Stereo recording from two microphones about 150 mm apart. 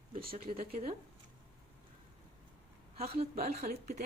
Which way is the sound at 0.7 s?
45° right (ahead or behind).